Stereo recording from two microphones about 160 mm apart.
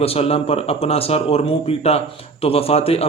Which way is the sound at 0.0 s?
40° left (ahead or behind).